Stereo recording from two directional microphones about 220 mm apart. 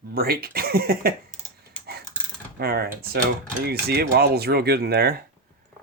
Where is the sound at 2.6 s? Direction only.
45° right (ahead or behind).